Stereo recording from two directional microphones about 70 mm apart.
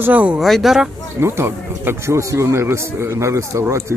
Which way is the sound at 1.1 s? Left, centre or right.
Right.